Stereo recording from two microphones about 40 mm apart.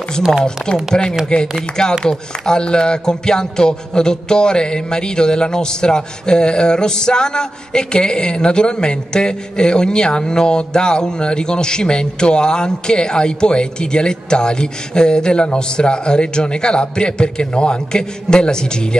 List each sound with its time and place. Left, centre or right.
0.6 s speech: centre
1.2 s music: left